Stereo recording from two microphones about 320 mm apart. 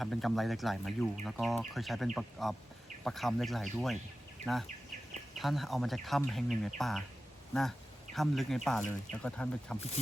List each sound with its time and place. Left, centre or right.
0.0 s speech: centre
5.4 s speech: centre
8.1 s speech: centre